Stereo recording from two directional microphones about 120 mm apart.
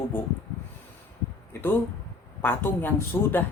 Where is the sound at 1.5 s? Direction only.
20° left (ahead or behind).